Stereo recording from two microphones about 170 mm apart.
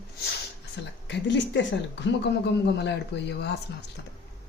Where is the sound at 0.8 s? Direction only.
90° left.